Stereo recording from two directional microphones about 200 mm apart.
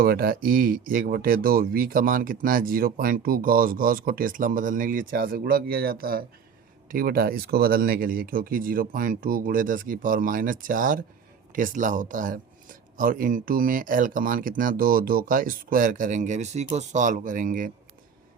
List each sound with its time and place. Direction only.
0.0 s speech: 50° right (ahead or behind)